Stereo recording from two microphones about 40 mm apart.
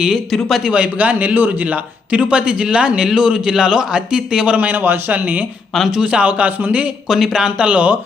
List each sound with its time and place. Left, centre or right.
0.3 s speech: centre
0.7 s a man's voice: right
1.5 s speech: right
4.5 s a man's voice: right
6.0 s a man's voice: right
7.1 s speech: centre
7.6 s a man's voice: right